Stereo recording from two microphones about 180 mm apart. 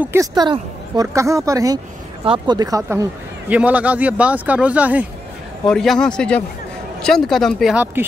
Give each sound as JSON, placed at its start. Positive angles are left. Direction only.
{"t": 0.0, "sound": "a woman's voice", "side_deg": -15}
{"t": 5.7, "sound": "speech", "side_deg": 5}